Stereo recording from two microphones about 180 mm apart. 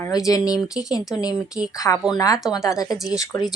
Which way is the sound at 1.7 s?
15° left (ahead or behind).